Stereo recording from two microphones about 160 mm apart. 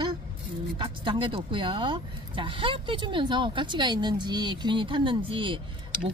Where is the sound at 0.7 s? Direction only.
30° right (ahead or behind).